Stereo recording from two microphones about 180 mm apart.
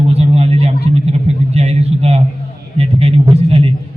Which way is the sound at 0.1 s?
35° right (ahead or behind).